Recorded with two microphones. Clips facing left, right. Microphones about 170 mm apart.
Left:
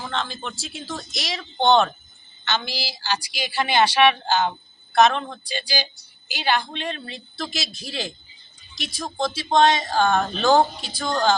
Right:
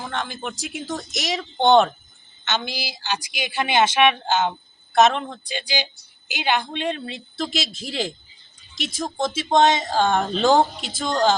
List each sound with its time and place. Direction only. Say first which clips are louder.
0.1 s speech: even; 15° right (ahead or behind)